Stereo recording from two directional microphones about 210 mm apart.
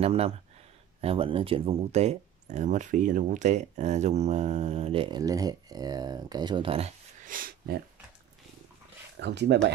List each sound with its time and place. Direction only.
0.0 s speech: 30° right (ahead or behind)
7.2 s speech: 40° right (ahead or behind)
9.2 s speech: 55° right (ahead or behind)